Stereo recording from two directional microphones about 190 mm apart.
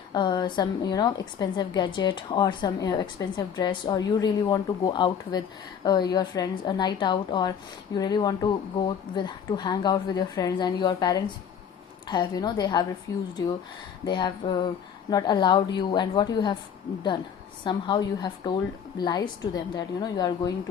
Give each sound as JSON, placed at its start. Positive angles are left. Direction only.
{"t": 0.1, "sound": "a woman's voice", "side_deg": 25}
{"t": 14.0, "sound": "a woman's voice", "side_deg": 20}
{"t": 17.6, "sound": "a woman's voice", "side_deg": 25}